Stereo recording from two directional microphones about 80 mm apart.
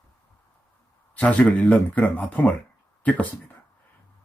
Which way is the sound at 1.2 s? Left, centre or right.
Centre.